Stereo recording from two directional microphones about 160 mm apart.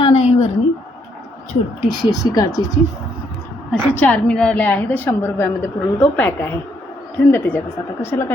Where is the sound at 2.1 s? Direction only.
20° left (ahead or behind).